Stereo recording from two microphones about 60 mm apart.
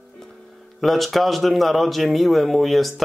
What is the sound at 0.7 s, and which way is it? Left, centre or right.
Speech, centre.